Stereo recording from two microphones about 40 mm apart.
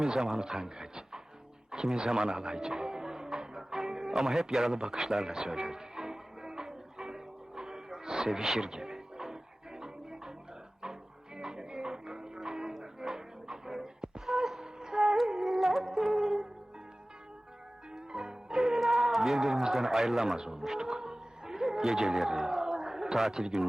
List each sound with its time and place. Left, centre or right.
0.0 s speech: centre
2.3 s music: centre
4.4 s speech: centre
4.9 s music: centre
11.3 s music: centre
17.9 s music: centre